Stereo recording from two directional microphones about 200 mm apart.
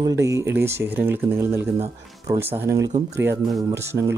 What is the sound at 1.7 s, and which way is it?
Speech, 20° right (ahead or behind).